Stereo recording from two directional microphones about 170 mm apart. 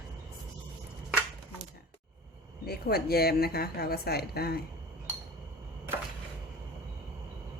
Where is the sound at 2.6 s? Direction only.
65° left (ahead or behind).